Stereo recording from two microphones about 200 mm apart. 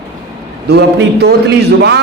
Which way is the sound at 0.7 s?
55° right (ahead or behind).